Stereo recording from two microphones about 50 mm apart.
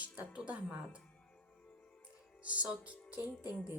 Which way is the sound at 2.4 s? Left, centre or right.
Right.